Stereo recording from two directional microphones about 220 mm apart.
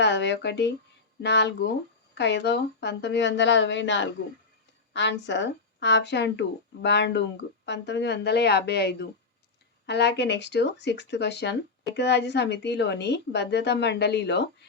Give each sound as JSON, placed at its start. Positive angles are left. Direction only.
{"t": 0.0, "sound": "a woman's voice", "side_deg": 50}